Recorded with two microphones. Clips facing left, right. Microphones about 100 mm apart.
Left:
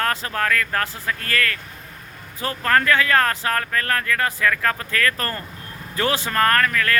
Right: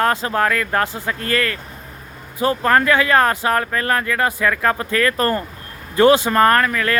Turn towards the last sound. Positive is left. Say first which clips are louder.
# right 4 dB
turn(degrees=-20)  # may be behind; listen again after turning